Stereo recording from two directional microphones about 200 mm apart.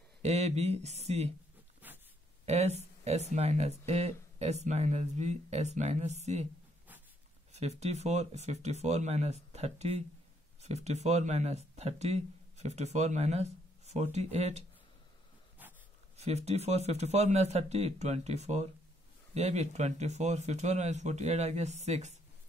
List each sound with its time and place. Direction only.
0.2 s speech: 35° right (ahead or behind)
1.8 s a sound: 10° right (ahead or behind)
2.4 s speech: 35° right (ahead or behind)
7.5 s speech: 35° right (ahead or behind)
15.6 s dog: 10° right (ahead or behind)
16.2 s speech: 35° right (ahead or behind)